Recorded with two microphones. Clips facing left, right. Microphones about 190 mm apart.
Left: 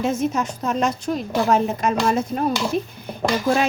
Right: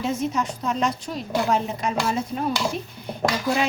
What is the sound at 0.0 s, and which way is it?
A woman's voice, 50° left (ahead or behind).